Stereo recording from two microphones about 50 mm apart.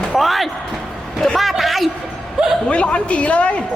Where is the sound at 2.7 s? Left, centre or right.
Left.